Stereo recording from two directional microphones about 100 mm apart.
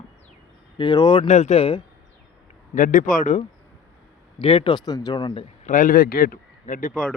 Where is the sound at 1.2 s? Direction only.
90° left.